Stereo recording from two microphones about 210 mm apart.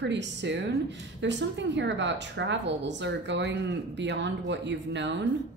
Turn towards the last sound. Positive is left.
turn(degrees=-60)  # may be behind; listen again after turning